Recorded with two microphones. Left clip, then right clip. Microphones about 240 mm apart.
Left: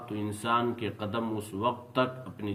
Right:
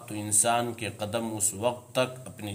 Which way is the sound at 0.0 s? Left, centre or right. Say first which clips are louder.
Right 6 dB; right.